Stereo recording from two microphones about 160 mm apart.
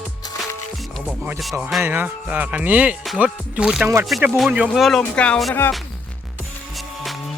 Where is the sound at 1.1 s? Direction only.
5° right (ahead or behind).